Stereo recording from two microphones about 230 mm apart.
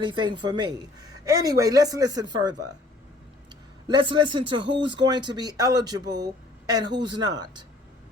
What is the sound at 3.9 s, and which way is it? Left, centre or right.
Speech, right.